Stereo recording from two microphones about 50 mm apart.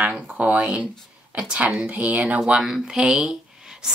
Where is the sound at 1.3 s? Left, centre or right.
Centre.